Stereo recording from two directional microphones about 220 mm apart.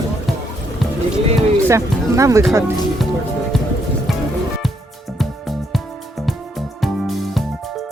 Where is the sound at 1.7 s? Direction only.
15° right (ahead or behind).